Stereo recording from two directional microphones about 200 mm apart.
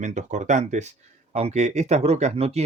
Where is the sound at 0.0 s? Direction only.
35° right (ahead or behind).